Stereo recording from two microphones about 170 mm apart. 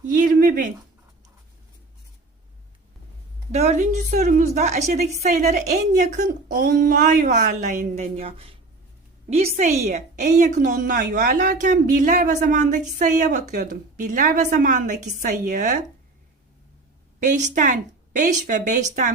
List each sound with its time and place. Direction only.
0.0 s a sound: 50° right (ahead or behind)
3.5 s a woman's voice: 40° right (ahead or behind); by 7.3 s 60° right (ahead or behind)
7.3 s a woman's voice: 45° right (ahead or behind)
17.2 s a woman's voice: 45° right (ahead or behind)